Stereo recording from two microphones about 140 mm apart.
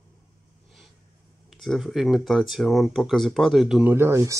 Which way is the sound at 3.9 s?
20° right (ahead or behind).